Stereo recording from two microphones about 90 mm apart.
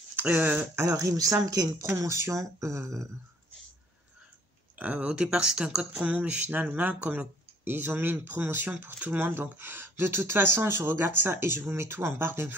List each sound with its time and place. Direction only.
0.1 s speech: 20° right (ahead or behind)
0.8 s speech: 40° right (ahead or behind)
4.7 s speech: 15° right (ahead or behind)